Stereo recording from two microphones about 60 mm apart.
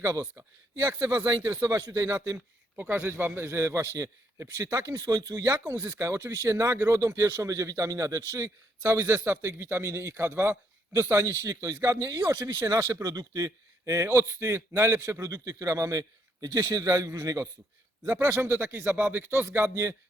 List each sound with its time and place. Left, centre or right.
0.3 s a man's voice: right
1.7 s a man's voice: right
3.8 s a man's voice: right
4.8 s speech: right
5.4 s a man's voice: right
11.4 s a man's voice: right
18.0 s a man's voice: right
19.7 s a man's voice: right